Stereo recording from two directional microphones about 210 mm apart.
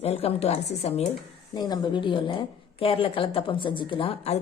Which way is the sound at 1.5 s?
20° left (ahead or behind).